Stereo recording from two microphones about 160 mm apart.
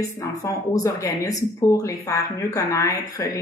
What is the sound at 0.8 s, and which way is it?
A woman's voice, 20° left (ahead or behind).